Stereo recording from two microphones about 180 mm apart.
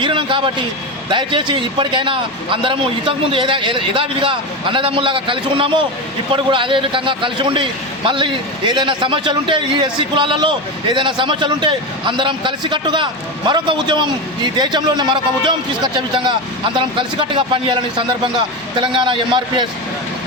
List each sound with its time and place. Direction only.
0.0 s a man's voice: 30° right (ahead or behind)